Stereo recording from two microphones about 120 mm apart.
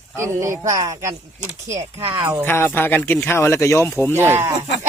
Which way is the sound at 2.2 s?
15° right (ahead or behind).